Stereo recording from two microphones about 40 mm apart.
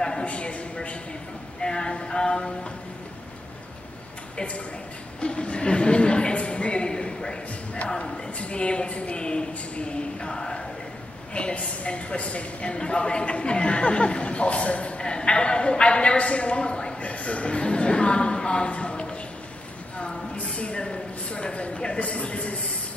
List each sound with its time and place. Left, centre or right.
0.2 s speech: left
1.6 s a woman's voice: left
5.2 s a woman's voice: left
10.4 s a sound: left
11.3 s a woman's voice: left
20.3 s speech: left